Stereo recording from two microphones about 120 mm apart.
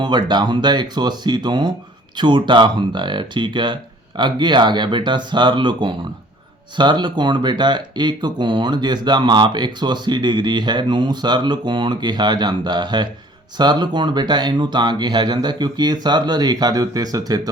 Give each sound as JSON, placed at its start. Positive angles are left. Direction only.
{"t": 0.0, "sound": "speech", "side_deg": -40}